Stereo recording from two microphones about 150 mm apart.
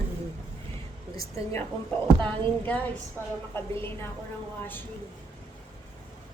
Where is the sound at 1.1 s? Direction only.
20° left (ahead or behind).